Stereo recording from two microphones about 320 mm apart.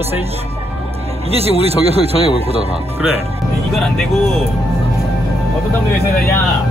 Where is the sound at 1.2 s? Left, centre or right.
Centre.